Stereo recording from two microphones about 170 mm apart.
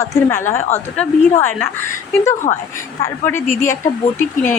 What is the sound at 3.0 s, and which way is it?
Speech, 15° left (ahead or behind).